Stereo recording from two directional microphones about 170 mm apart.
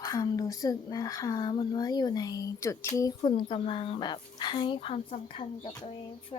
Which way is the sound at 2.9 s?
25° left (ahead or behind).